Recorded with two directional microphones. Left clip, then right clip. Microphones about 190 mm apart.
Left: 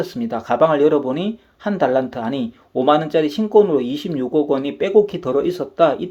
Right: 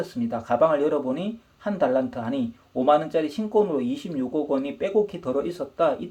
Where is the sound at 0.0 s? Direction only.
35° left (ahead or behind).